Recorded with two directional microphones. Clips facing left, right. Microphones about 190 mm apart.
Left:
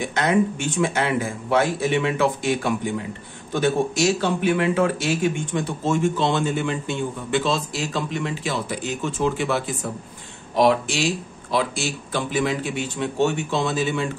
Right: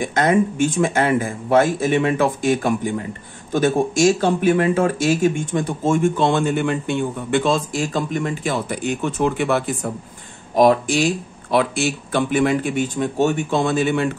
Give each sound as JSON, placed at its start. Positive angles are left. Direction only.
{"t": 0.0, "sound": "speech", "side_deg": -50}
{"t": 10.5, "sound": "speech", "side_deg": -45}